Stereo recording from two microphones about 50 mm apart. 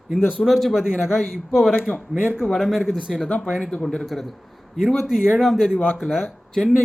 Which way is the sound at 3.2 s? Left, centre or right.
Left.